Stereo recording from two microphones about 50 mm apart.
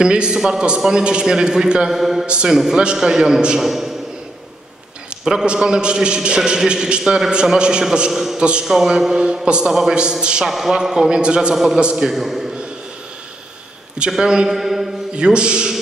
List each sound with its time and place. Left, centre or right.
0.0 s a man's voice: centre
2.2 s a man's voice: centre
5.2 s a man's voice: centre
8.4 s a man's voice: centre
8.6 s a man's voice: centre
11.5 s a man's voice: centre
14.1 s a man's voice: centre
15.1 s a man's voice: centre